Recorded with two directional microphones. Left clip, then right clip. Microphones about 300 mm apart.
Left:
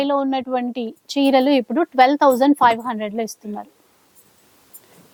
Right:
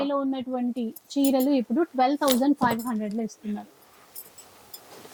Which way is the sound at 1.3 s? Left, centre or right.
Centre.